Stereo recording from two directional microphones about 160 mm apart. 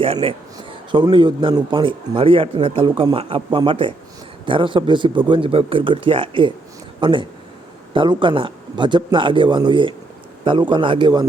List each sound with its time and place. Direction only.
0.0 s a man's voice: 35° right (ahead or behind)